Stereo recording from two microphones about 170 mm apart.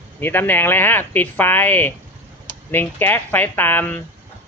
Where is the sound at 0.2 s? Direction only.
10° left (ahead or behind).